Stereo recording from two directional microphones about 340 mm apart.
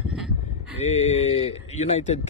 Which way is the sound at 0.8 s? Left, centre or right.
Centre.